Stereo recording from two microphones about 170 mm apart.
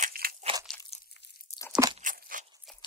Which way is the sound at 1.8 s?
15° right (ahead or behind).